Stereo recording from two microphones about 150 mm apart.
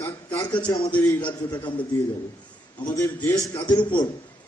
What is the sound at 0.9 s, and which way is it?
Speech, 15° left (ahead or behind).